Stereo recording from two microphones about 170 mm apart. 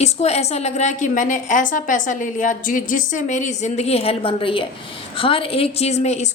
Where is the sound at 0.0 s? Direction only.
40° left (ahead or behind).